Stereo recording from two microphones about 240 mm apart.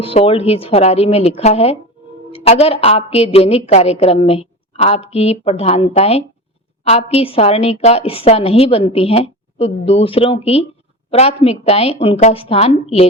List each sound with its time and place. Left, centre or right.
0.0 s a woman's voice: left